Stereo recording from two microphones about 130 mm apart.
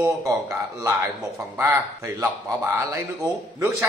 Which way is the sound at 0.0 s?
20° right (ahead or behind).